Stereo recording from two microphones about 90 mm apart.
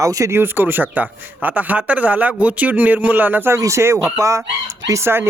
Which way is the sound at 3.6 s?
35° right (ahead or behind).